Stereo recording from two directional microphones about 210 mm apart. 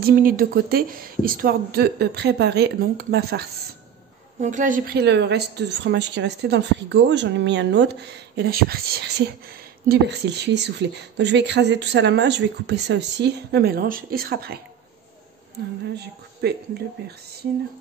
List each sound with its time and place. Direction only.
0.0 s a woman's voice: 45° right (ahead or behind)
4.4 s a woman's voice: 35° right (ahead or behind)
16.4 s a woman's voice: 50° right (ahead or behind)